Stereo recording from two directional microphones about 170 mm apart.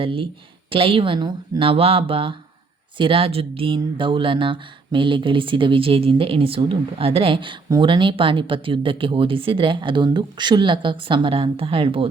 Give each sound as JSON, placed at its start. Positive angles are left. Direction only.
{"t": 0.0, "sound": "speech", "side_deg": -30}